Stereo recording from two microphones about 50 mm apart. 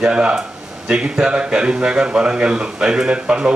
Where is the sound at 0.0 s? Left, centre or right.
Centre.